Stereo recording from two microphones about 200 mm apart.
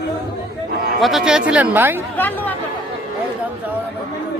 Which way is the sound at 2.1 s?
10° left (ahead or behind).